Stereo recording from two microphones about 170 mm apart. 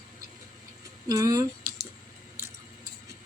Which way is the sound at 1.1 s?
20° right (ahead or behind).